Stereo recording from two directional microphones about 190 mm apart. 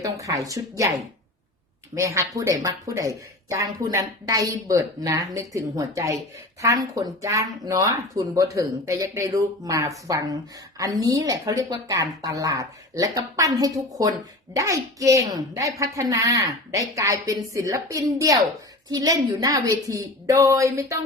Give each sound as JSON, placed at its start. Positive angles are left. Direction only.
{"t": 0.0, "sound": "speech", "side_deg": -15}
{"t": 2.0, "sound": "speech", "side_deg": -15}